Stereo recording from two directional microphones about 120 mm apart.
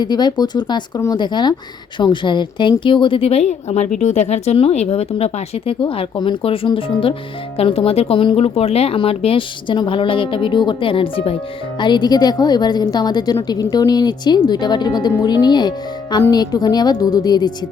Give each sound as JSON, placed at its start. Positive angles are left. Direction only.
{"t": 0.0, "sound": "a woman's voice", "side_deg": 35}
{"t": 11.8, "sound": "a woman's voice", "side_deg": 40}